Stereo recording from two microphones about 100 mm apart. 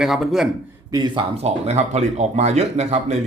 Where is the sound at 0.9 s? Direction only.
40° right (ahead or behind).